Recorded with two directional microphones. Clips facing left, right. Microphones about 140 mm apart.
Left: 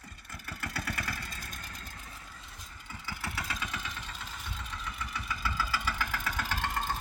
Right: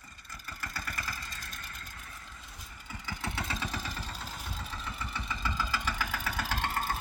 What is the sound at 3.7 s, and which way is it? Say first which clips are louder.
Vehicle: right 2 dB; 35° right (ahead or behind).